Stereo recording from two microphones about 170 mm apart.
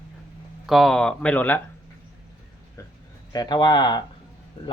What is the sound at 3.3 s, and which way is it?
Speech, 25° left (ahead or behind).